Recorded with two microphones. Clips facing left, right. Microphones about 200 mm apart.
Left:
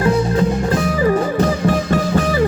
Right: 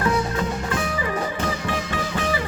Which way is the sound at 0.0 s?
35° left (ahead or behind).